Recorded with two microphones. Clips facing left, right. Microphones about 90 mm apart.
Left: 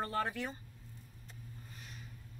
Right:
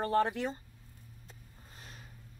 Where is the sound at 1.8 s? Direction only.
35° right (ahead or behind).